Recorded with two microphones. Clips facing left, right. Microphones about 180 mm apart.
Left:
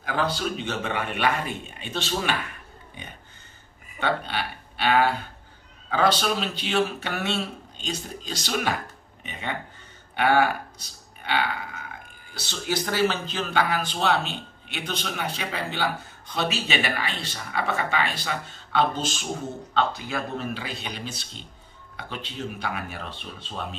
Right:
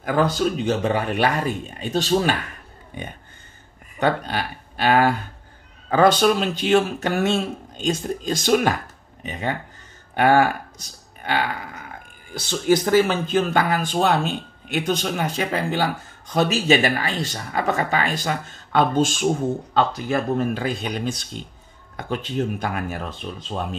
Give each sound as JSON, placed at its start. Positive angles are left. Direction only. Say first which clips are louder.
{"t": 0.0, "sound": "a man's voice", "louder": "right 7 dB", "side_deg": -45}
{"t": 4.0, "sound": "a man's voice", "louder": "right 5 dB", "side_deg": -45}
{"t": 12.4, "sound": "speech", "louder": "right 10 dB", "side_deg": -50}
{"t": 20.1, "sound": "speech", "louder": "right 8 dB", "side_deg": -50}